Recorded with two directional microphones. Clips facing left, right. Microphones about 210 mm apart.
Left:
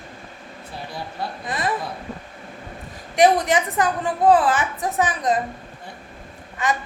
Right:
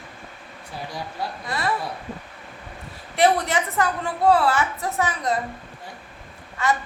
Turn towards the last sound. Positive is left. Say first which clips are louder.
# even
turn(degrees=15)  # may be behind; listen again after turning